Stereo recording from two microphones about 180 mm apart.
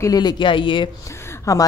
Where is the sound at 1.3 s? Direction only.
15° left (ahead or behind).